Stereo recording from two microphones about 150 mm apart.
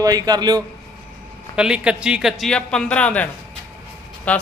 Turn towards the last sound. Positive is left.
turn(degrees=10)  # may be behind; listen again after turning